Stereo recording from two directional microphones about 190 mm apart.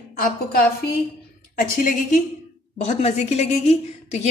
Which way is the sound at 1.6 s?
45° left (ahead or behind).